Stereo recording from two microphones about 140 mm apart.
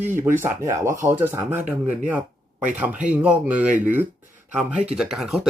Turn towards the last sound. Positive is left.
turn(degrees=-5)  # may be behind; listen again after turning